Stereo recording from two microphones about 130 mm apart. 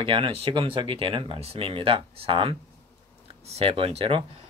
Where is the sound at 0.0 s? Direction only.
45° right (ahead or behind).